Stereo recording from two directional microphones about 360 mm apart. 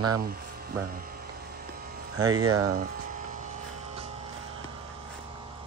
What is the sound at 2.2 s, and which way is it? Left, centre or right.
Speech, right.